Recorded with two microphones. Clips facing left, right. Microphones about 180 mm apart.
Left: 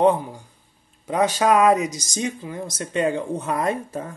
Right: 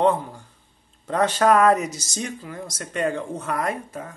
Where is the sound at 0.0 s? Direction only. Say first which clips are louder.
Left 2 dB; 15° left (ahead or behind).